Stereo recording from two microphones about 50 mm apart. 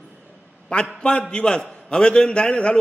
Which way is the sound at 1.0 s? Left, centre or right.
Left.